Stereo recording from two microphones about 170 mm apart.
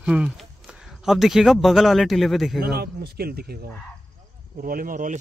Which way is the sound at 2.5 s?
70° right (ahead or behind).